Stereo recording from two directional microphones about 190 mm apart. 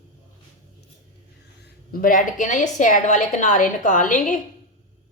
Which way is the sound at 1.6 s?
50° left (ahead or behind).